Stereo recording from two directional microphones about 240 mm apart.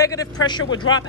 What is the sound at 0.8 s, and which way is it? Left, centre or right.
Speech, left.